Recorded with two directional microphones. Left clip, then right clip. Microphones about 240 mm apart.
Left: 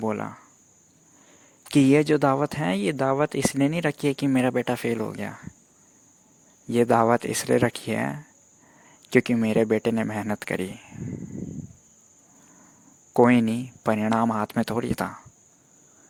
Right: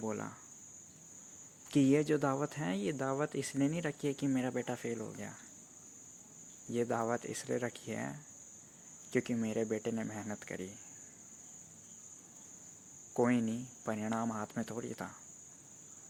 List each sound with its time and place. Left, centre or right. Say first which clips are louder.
0.0 s speech: left 12 dB; left
1.6 s speech: left 11 dB; left
6.7 s speech: left 15 dB; left
13.1 s speech: left 14 dB; left